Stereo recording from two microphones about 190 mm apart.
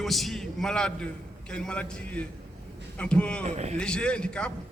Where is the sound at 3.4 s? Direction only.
35° right (ahead or behind).